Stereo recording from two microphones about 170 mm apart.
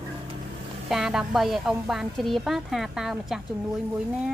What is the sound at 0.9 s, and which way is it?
Speech, 5° right (ahead or behind).